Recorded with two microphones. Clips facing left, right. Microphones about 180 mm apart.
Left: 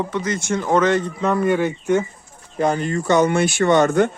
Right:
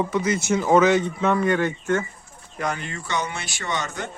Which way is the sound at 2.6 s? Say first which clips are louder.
Left 9 dB; 35° left (ahead or behind).